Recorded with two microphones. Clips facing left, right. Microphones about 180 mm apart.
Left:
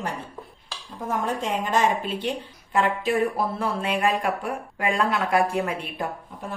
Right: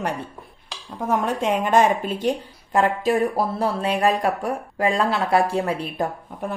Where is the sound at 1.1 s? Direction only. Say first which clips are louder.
Right 5 dB; 60° right (ahead or behind); by 6.1 s 35° right (ahead or behind).